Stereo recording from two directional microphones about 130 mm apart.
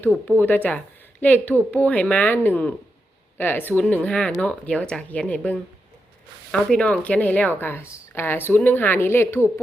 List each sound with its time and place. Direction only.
0.4 s speech: 15° left (ahead or behind)